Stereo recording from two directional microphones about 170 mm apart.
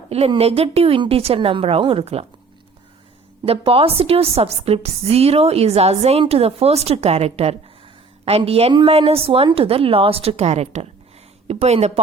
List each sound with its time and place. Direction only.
0.1 s a woman's voice: 35° right (ahead or behind)
3.4 s a woman's voice: 35° right (ahead or behind)